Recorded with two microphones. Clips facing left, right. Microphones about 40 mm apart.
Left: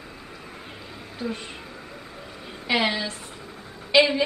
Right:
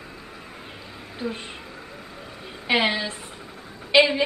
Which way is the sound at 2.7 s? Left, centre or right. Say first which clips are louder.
Right 2 dB; centre.